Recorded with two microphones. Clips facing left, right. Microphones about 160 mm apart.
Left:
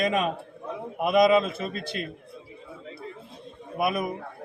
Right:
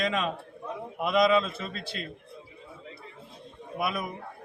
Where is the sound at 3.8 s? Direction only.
15° left (ahead or behind).